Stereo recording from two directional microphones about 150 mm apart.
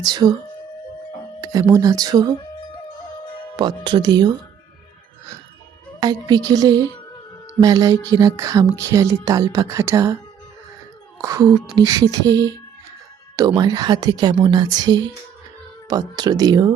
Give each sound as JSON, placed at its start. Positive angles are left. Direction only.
{"t": 0.0, "sound": "speech", "side_deg": -30}
{"t": 1.4, "sound": "speech", "side_deg": -25}
{"t": 3.6, "sound": "speech", "side_deg": -30}
{"t": 6.0, "sound": "speech", "side_deg": -25}
{"t": 11.2, "sound": "a woman's voice", "side_deg": -20}